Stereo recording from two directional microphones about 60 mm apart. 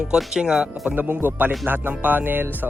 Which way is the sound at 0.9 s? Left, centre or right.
Right.